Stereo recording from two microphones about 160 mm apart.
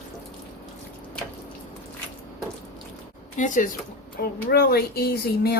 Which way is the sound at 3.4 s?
50° left (ahead or behind).